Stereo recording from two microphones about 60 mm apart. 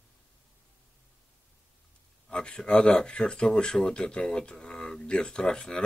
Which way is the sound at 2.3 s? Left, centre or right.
Centre.